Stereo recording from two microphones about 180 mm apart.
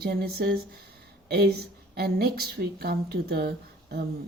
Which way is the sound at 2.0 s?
60° right (ahead or behind).